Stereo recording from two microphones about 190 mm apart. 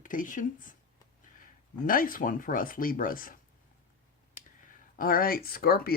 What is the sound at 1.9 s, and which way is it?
Speech, 45° left (ahead or behind).